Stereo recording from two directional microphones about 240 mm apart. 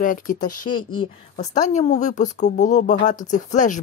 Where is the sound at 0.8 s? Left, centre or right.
Left.